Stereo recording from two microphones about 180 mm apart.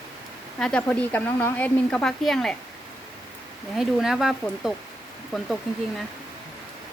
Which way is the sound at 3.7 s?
Centre (ahead or behind).